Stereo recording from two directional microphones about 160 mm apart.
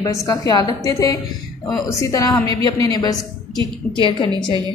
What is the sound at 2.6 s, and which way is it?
Speech, 25° left (ahead or behind).